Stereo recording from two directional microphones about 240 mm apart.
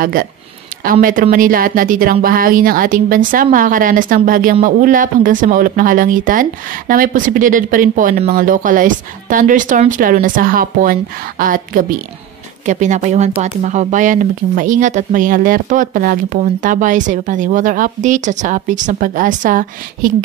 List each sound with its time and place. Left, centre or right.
0.0 s speech: right